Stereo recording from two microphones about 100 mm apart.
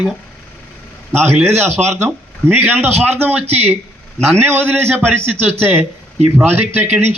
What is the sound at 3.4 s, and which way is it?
Speech, 90° right.